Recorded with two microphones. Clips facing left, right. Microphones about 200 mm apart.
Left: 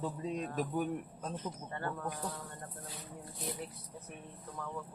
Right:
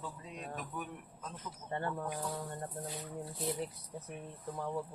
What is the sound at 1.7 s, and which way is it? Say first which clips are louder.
Speech: right 5 dB; 25° right (ahead or behind).